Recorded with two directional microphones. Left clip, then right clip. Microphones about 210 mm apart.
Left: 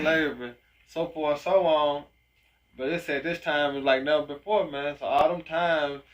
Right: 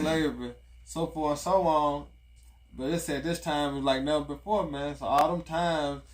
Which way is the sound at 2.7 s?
25° right (ahead or behind).